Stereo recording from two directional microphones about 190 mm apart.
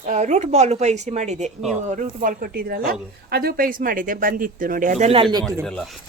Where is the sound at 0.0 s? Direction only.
40° right (ahead or behind); by 5.6 s 20° right (ahead or behind).